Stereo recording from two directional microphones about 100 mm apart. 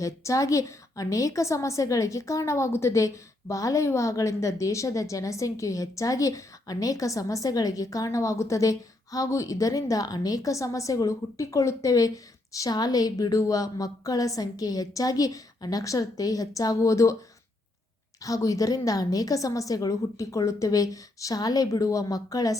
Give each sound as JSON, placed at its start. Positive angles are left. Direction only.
{"t": 0.0, "sound": "a woman's voice", "side_deg": 30}
{"t": 18.2, "sound": "a woman's voice", "side_deg": 35}